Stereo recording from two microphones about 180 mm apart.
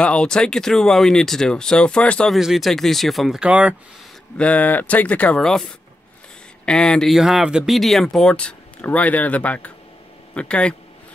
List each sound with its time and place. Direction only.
0.0 s speech: 5° left (ahead or behind)
4.4 s speech: 10° left (ahead or behind)